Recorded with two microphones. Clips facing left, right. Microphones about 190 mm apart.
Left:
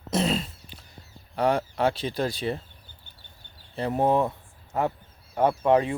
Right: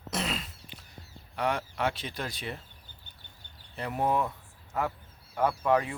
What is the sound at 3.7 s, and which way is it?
Speech, 30° left (ahead or behind).